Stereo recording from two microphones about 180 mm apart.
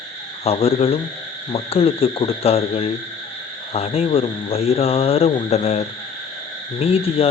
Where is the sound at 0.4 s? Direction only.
35° left (ahead or behind).